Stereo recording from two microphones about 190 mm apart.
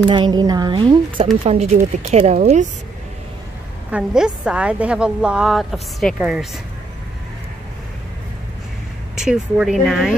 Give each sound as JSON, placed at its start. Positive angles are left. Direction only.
{"t": 0.1, "sound": "a woman's voice", "side_deg": -25}
{"t": 3.9, "sound": "a woman's voice", "side_deg": -5}
{"t": 9.2, "sound": "a woman's voice", "side_deg": -5}